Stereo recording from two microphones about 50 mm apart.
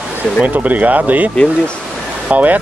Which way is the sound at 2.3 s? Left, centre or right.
Right.